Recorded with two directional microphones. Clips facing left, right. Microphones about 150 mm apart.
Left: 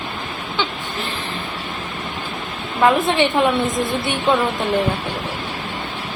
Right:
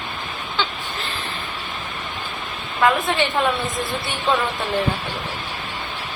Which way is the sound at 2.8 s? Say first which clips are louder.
Left 3 dB; 20° left (ahead or behind).